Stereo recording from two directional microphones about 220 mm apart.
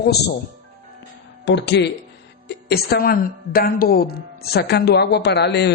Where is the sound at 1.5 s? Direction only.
50° left (ahead or behind).